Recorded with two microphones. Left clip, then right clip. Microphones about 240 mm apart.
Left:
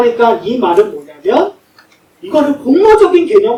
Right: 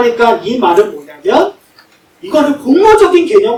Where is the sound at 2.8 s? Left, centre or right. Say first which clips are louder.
Even; left.